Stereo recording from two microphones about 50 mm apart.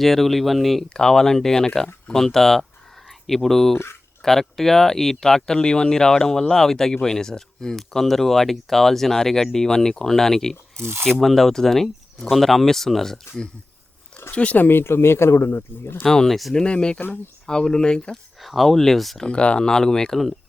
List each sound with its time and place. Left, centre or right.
0.0 s speech: centre
10.8 s speech: right
11.2 s speech: centre
14.3 s speech: left
14.6 s speech: left
16.0 s speech: centre
16.6 s speech: centre
18.3 s speech: centre
19.2 s speech: left